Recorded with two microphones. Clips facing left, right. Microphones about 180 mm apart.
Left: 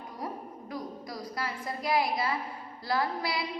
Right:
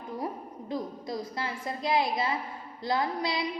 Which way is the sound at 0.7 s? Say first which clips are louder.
Right 5 dB; 25° right (ahead or behind).